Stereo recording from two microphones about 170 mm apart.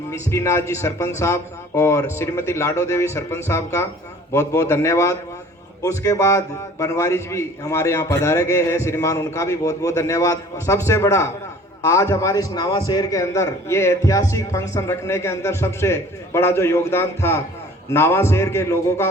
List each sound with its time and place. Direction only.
0.1 s a man's voice: 15° left (ahead or behind)